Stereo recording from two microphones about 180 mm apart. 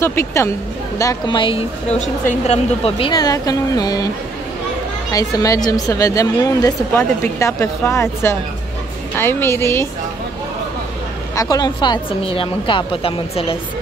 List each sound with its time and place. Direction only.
0.0 s a woman's voice: 15° left (ahead or behind)
2.0 s a woman's voice: 35° left (ahead or behind); by 4.1 s 20° left (ahead or behind)
5.1 s a woman's voice: 20° left (ahead or behind)
11.3 s a woman's voice: 20° left (ahead or behind)